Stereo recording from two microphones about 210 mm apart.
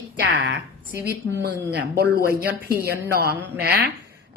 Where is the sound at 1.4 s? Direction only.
50° right (ahead or behind).